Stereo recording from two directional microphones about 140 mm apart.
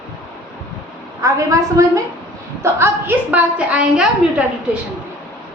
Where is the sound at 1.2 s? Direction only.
20° right (ahead or behind).